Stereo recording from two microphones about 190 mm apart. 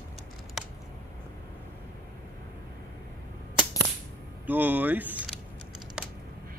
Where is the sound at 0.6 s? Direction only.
Centre (ahead or behind).